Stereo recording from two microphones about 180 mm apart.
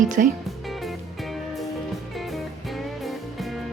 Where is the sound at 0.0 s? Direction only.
45° right (ahead or behind).